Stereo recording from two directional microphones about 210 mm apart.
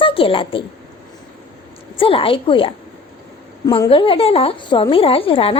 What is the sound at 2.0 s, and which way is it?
A woman's voice, 25° left (ahead or behind).